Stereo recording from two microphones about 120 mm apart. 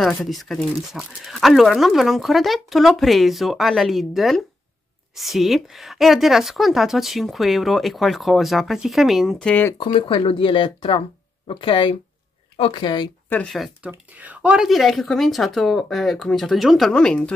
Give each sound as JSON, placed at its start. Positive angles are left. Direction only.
{"t": 0.2, "sound": "a woman's voice", "side_deg": 0}
{"t": 9.5, "sound": "speech", "side_deg": 15}
{"t": 9.9, "sound": "speech", "side_deg": 50}
{"t": 13.8, "sound": "a woman's voice", "side_deg": -15}